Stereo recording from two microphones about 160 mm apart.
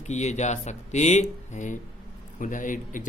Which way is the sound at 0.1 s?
45° left (ahead or behind).